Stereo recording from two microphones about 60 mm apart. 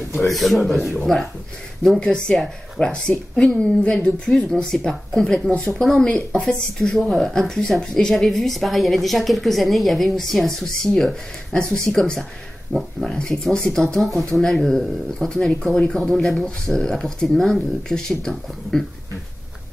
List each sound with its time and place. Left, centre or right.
0.1 s speech: centre
2.0 s speech: centre